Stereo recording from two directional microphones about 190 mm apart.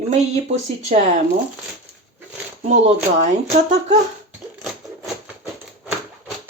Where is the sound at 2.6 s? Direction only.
35° right (ahead or behind).